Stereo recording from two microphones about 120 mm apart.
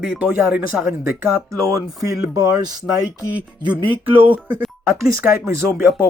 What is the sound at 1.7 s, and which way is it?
Speech, 25° right (ahead or behind).